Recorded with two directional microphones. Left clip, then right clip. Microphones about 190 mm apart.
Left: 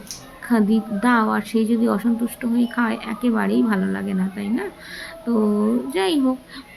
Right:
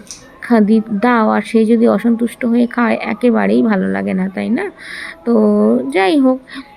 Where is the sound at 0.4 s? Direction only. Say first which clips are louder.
Right 8 dB; 20° right (ahead or behind).